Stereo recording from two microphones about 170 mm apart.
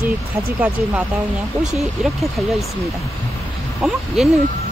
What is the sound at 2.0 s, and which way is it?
Speech, centre (ahead or behind).